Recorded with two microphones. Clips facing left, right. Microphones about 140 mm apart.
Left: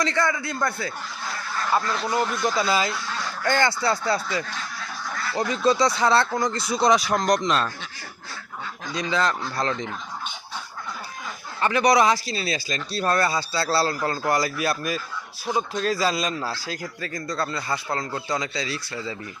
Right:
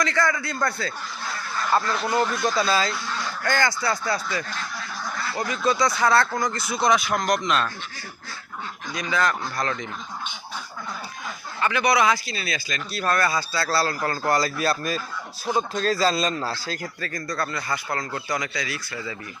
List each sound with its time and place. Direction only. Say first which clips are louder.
0.0 s a man's voice: even; 25° left (ahead or behind)
1.9 s speech: right 1 dB; 5° right (ahead or behind)
2.6 s a man's voice: right 1 dB; 15° left (ahead or behind)
5.5 s a man's voice: left 2 dB; 30° left (ahead or behind)
8.9 s a man's voice: even; 25° left (ahead or behind)
11.6 s a man's voice: left 2 dB; 35° left (ahead or behind)